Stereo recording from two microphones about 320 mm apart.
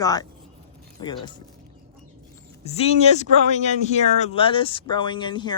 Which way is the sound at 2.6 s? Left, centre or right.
Centre.